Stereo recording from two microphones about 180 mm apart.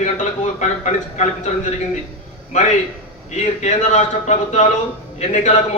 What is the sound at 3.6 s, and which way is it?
A man's voice, 40° left (ahead or behind).